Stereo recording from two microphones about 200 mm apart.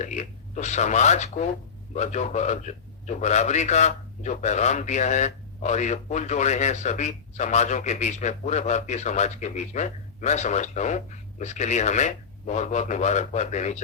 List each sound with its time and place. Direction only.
0.0 s a man's voice: 35° left (ahead or behind)